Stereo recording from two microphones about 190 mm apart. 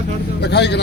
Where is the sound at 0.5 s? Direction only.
65° left (ahead or behind).